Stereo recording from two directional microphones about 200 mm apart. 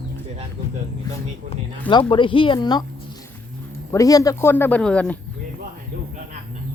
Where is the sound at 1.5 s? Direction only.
25° left (ahead or behind).